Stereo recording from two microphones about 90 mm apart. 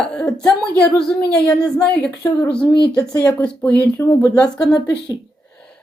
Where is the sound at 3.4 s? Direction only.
20° left (ahead or behind).